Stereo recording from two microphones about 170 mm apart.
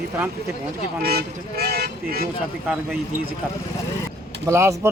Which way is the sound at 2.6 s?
10° right (ahead or behind).